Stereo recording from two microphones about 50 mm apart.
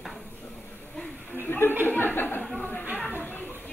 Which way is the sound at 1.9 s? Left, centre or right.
Left.